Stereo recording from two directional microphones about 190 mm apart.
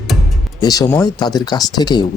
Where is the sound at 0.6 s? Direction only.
20° left (ahead or behind).